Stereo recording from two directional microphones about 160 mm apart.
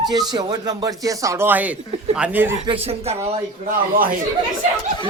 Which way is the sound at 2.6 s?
35° right (ahead or behind).